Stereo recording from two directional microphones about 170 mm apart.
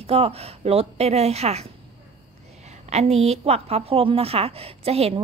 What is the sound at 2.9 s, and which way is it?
A woman's voice, 40° right (ahead or behind).